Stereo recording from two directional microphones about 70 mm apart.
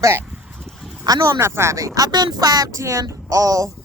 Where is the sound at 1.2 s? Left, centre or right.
Right.